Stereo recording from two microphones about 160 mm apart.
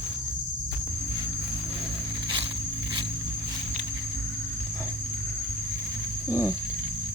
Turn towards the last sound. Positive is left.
turn(degrees=15)  # may be behind; listen again after turning